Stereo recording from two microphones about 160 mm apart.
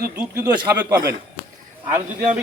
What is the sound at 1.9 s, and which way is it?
Speech, 20° right (ahead or behind).